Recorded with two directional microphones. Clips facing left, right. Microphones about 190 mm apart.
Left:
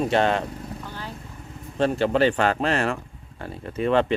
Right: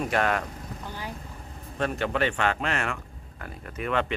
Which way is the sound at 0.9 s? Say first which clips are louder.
Left 1 dB; 15° right (ahead or behind).